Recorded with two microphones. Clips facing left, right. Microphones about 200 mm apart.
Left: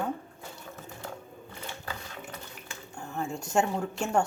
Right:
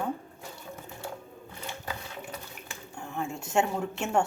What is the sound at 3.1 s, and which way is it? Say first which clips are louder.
Speech: even; centre (ahead or behind).